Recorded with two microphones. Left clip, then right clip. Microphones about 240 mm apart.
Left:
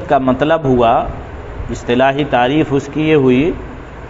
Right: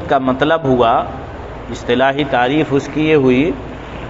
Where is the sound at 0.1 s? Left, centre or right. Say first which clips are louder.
Left 1 dB; left.